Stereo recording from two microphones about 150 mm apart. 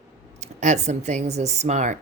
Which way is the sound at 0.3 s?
50° right (ahead or behind).